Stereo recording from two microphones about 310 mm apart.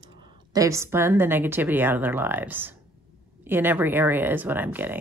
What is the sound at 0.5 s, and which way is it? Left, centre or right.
A woman's voice, centre.